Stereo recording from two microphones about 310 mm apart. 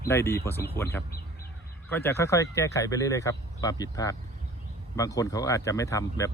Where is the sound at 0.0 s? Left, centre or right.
Centre.